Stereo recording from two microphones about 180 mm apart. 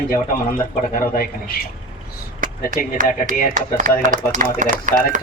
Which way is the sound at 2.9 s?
50° right (ahead or behind).